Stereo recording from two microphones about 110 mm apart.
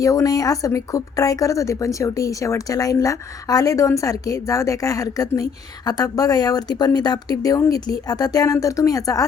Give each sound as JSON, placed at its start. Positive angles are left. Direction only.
{"t": 0.0, "sound": "speech", "side_deg": 30}